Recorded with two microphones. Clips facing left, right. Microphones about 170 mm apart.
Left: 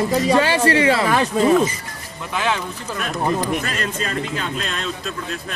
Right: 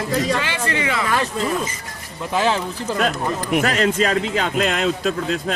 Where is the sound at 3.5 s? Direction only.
80° right.